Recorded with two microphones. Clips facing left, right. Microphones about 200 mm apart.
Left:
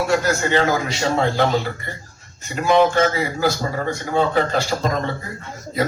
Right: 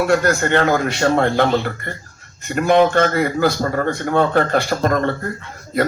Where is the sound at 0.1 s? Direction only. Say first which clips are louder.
Right 3 dB; 55° right (ahead or behind).